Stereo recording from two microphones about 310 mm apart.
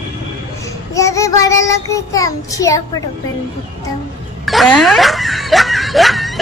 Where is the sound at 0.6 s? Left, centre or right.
Centre.